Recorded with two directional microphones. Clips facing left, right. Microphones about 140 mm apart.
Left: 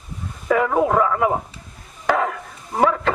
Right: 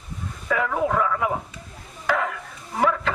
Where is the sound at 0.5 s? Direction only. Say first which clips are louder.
Left 5 dB; 40° left (ahead or behind).